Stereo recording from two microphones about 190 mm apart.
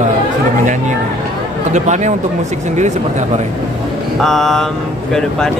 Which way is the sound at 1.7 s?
40° right (ahead or behind).